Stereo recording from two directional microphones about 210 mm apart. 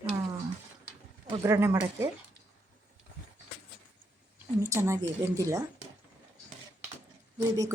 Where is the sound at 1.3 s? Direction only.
10° right (ahead or behind).